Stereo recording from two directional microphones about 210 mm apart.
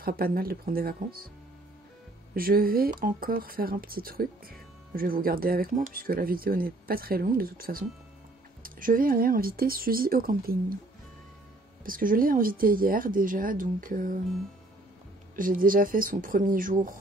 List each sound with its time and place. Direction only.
0.0 s speech: 45° right (ahead or behind)
2.3 s speech: 45° right (ahead or behind)
11.8 s speech: 40° right (ahead or behind)
15.3 s speech: 40° right (ahead or behind)